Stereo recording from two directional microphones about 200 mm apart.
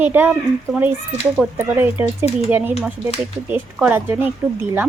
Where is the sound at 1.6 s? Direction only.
10° right (ahead or behind).